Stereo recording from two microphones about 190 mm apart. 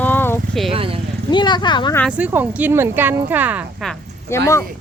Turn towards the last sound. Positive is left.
turn(degrees=15)  # may be behind; listen again after turning